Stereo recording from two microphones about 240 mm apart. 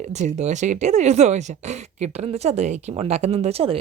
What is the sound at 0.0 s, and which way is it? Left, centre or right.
Speech, right.